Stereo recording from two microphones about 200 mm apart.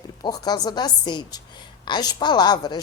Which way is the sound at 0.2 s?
20° left (ahead or behind).